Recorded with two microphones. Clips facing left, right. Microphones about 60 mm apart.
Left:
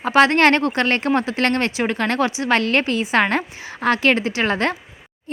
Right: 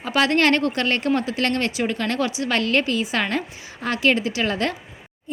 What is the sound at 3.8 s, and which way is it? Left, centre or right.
Speech, left.